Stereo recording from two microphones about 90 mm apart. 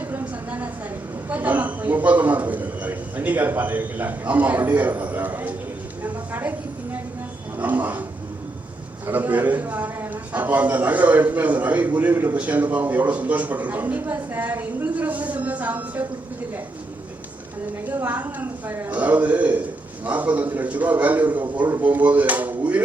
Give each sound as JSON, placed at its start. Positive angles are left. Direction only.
{"t": 0.1, "sound": "a sound", "side_deg": -20}
{"t": 1.3, "sound": "a man's voice", "side_deg": -20}
{"t": 6.0, "sound": "a sound", "side_deg": -20}
{"t": 7.6, "sound": "roaring cats", "side_deg": -20}
{"t": 9.0, "sound": "a man's voice", "side_deg": -20}
{"t": 17.8, "sound": "a man's voice", "side_deg": -20}